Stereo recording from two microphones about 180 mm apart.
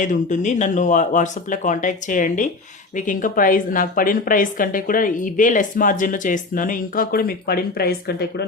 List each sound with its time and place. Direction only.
0.0 s a woman's voice: 45° left (ahead or behind); by 8.4 s 60° left (ahead or behind)